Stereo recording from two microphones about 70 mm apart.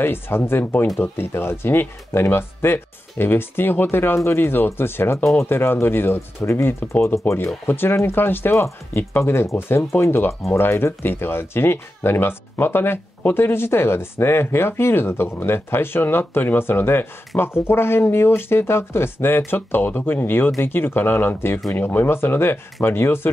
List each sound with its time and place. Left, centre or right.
0.0 s speech: left